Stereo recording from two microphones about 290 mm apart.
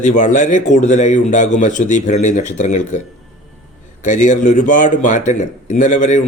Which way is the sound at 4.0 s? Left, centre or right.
Left.